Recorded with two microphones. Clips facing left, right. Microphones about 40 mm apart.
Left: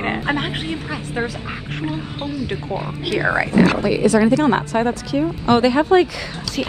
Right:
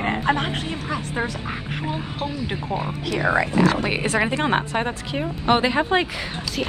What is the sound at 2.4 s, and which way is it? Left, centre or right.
Speech, centre.